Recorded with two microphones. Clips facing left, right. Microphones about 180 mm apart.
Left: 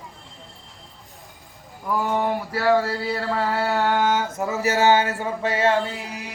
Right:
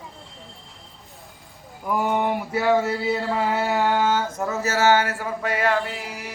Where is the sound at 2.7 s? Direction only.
20° right (ahead or behind).